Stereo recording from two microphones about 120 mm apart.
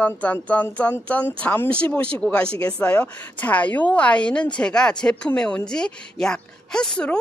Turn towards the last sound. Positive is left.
turn(degrees=5)  # may be behind; listen again after turning